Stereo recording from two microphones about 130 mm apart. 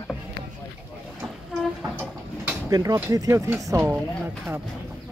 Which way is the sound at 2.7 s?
30° right (ahead or behind).